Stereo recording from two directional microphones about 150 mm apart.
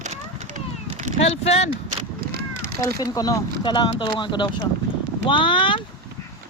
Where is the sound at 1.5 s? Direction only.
45° left (ahead or behind).